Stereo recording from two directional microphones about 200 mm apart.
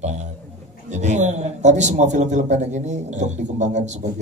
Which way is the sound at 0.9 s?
35° right (ahead or behind).